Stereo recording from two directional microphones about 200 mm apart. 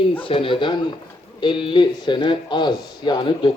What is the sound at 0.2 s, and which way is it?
Speech, 25° left (ahead or behind).